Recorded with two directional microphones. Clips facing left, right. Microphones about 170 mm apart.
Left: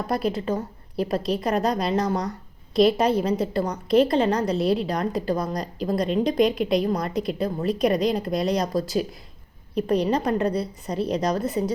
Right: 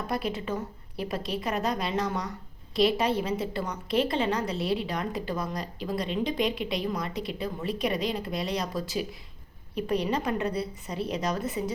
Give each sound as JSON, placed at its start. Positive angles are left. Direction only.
{"t": 0.1, "sound": "a woman's voice", "side_deg": 40}